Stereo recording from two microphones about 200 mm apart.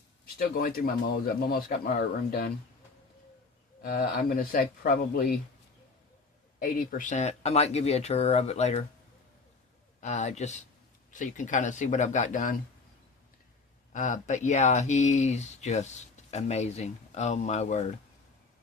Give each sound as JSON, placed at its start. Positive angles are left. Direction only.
{"t": 0.3, "sound": "speech", "side_deg": 45}
{"t": 3.8, "sound": "speech", "side_deg": 45}
{"t": 6.6, "sound": "speech", "side_deg": 45}
{"t": 10.0, "sound": "speech", "side_deg": 35}
{"t": 13.9, "sound": "speech", "side_deg": 40}